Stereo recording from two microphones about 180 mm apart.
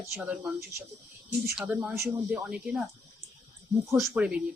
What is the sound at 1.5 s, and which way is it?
Speech, 10° right (ahead or behind).